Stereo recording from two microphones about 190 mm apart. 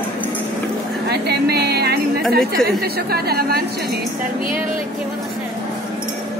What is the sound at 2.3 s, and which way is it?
A woman's voice, 55° right (ahead or behind).